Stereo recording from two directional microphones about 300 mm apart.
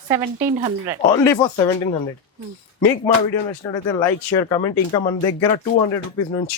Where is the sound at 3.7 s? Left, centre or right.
Centre.